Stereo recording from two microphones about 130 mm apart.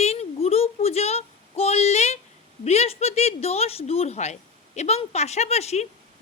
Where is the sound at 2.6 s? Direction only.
55° left (ahead or behind).